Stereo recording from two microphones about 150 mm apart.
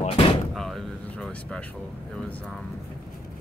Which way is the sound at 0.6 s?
Centre (ahead or behind).